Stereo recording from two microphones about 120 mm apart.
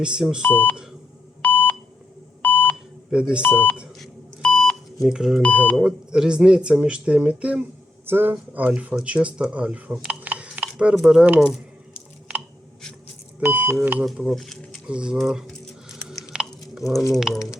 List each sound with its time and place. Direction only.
0.0 s speech: 5° right (ahead or behind)
0.5 s speech: 15° left (ahead or behind)
1.4 s beep: 15° left (ahead or behind)
3.1 s speech: 10° right (ahead or behind)
3.4 s speech: 15° left (ahead or behind)
3.8 s beep: centre (ahead or behind)
5.0 s speech: 5° right (ahead or behind)
5.4 s speech: 10° left (ahead or behind)
5.7 s speech: 5° right (ahead or behind)
13.4 s speech: 15° right (ahead or behind)
14.0 s speech: centre (ahead or behind)
14.8 s a sound: 10° right (ahead or behind)
16.3 s chewing: 5° right (ahead or behind)
17.2 s speech: 5° right (ahead or behind)